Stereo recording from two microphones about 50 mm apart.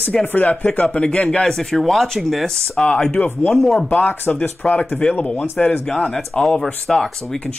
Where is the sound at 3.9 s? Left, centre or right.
Left.